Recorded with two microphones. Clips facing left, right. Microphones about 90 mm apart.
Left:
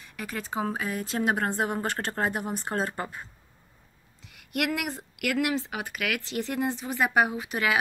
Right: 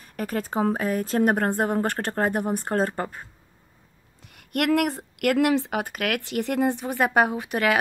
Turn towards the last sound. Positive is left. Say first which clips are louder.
# right 4 dB
turn(degrees=-50)  # may be behind; listen again after turning